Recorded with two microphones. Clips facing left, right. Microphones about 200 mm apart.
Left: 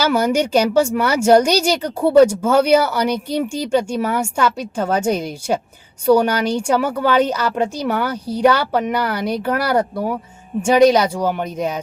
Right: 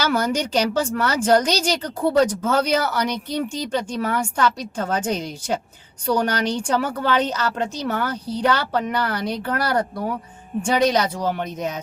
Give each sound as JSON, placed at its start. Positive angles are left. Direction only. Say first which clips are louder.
{"t": 0.0, "sound": "a woman's voice", "louder": "left 5 dB", "side_deg": 10}